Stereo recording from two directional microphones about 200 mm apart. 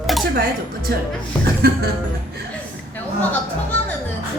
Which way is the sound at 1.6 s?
50° right (ahead or behind).